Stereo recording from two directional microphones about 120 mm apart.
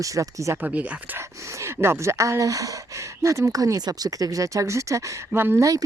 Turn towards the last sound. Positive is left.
turn(degrees=-25)  # may be behind; listen again after turning